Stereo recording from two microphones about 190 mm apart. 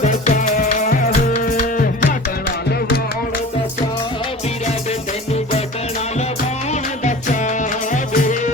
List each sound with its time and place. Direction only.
0.0 s music: 40° left (ahead or behind)
5.3 s music: 35° left (ahead or behind)
7.0 s music: 40° left (ahead or behind)